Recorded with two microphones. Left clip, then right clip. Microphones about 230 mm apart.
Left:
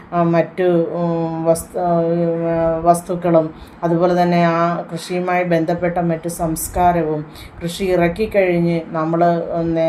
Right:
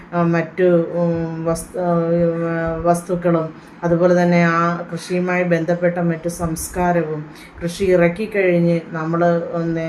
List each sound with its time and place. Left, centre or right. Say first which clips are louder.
0.1 s speech: left 3 dB; centre